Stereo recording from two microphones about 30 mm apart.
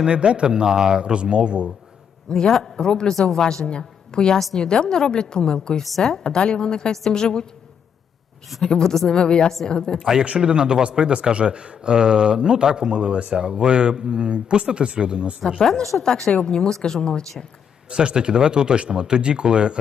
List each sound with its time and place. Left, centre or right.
0.0 s speech: right
2.3 s speech: left
3.7 s a woman's voice: left
8.5 s a woman's voice: centre
9.0 s a woman's voice: left
10.0 s speech: centre
10.4 s speech: right
15.5 s a woman's voice: centre
17.8 s speech: right